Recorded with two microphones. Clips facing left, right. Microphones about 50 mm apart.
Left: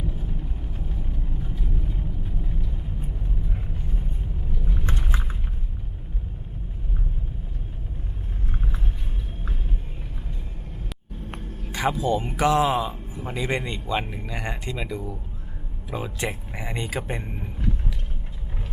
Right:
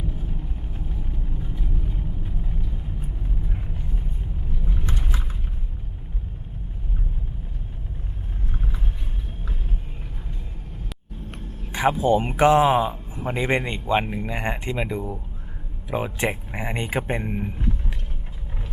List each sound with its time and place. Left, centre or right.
0.1 s vehicle: centre
1.4 s vehicle: centre
4.6 s vehicle: centre
11.3 s vehicle: left
11.7 s speech: right